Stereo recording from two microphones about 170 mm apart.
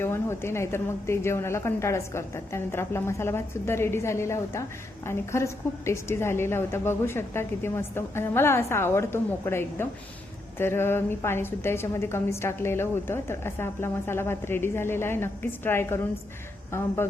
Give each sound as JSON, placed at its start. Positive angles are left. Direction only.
{"t": 0.0, "sound": "a woman's voice", "side_deg": 15}